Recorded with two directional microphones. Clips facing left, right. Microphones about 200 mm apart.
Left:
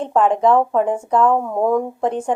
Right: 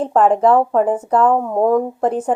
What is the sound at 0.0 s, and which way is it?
A woman's voice, 5° right (ahead or behind).